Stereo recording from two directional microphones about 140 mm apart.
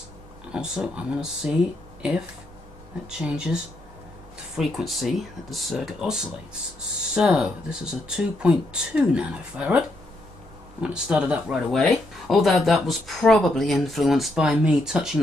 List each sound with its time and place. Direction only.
0.5 s speech: 5° right (ahead or behind)
4.6 s speech: centre (ahead or behind)
10.8 s speech: 5° right (ahead or behind)